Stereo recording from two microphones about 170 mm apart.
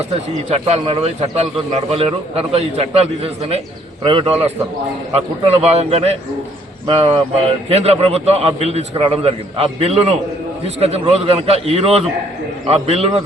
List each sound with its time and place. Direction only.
0.5 s a man's voice: 35° right (ahead or behind)